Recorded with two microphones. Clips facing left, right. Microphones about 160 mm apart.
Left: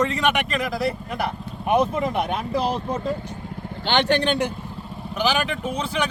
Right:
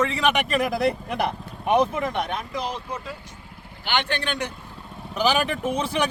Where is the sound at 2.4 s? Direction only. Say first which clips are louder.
Left 6 dB; 30° left (ahead or behind).